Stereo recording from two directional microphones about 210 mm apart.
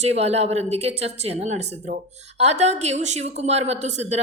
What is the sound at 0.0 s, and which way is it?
A woman's voice, 30° right (ahead or behind).